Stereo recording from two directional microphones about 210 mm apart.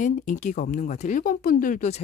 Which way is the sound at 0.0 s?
35° left (ahead or behind).